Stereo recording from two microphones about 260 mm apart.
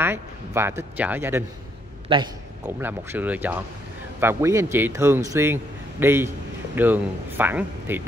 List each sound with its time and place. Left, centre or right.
0.0 s speech: centre
2.1 s a man's voice: right
2.6 s a man's voice: centre